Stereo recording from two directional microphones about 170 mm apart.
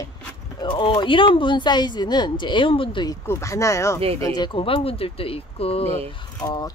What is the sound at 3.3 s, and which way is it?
Speech, 15° left (ahead or behind).